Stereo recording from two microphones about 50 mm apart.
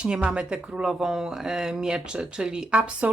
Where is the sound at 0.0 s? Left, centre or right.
Centre.